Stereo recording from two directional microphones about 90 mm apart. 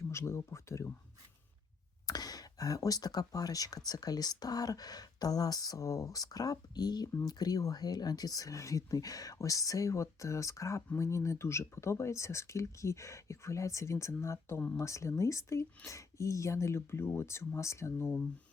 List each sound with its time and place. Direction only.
0.1 s speech: 30° left (ahead or behind)
2.0 s speech: 45° left (ahead or behind)